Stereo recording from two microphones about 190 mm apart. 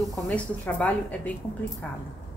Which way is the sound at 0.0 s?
5° left (ahead or behind).